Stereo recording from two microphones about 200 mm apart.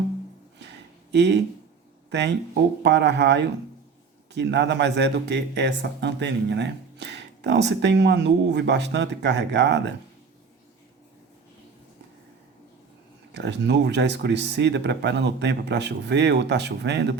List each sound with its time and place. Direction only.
1.1 s speech: 60° right (ahead or behind)
13.3 s speech: 60° right (ahead or behind)